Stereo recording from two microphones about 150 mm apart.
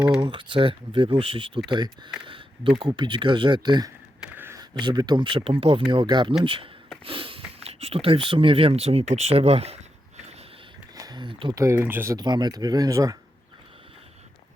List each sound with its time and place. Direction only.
0.2 s speech: 30° right (ahead or behind)
4.2 s a sound: 15° right (ahead or behind)
4.7 s speech: 30° right (ahead or behind)
10.9 s a sound: 25° right (ahead or behind)
11.5 s speech: 20° right (ahead or behind)
12.1 s speech: 30° right (ahead or behind)